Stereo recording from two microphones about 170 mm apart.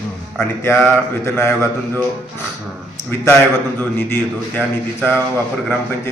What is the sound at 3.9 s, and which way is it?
Mantra, 10° left (ahead or behind).